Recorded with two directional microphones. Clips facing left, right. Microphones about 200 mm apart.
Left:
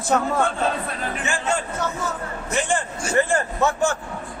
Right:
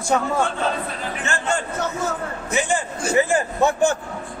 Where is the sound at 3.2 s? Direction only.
10° right (ahead or behind).